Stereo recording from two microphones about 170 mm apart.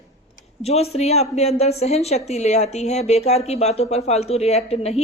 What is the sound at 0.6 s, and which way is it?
Speech, 35° left (ahead or behind).